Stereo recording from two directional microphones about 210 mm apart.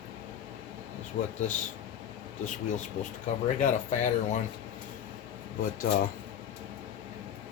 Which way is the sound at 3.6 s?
35° left (ahead or behind).